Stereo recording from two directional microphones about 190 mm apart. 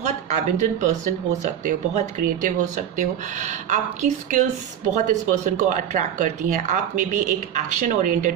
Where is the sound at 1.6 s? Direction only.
45° right (ahead or behind).